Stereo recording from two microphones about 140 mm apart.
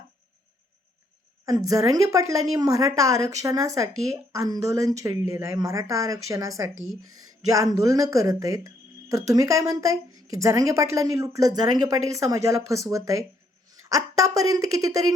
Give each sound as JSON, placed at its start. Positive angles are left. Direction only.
{"t": 1.5, "sound": "a woman's voice", "side_deg": -25}